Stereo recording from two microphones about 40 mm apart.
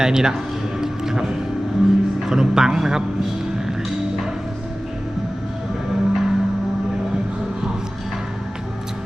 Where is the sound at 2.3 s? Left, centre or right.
Centre.